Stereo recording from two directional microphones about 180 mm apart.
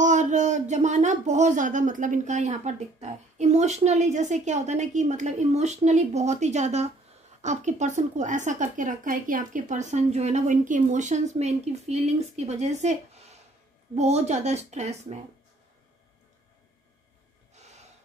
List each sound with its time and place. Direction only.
0.0 s speech: 40° right (ahead or behind)